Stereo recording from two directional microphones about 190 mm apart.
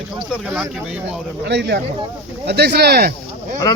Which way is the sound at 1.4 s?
60° right (ahead or behind).